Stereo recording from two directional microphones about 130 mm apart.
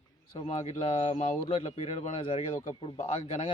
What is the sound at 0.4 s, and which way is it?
Speech, 60° left (ahead or behind).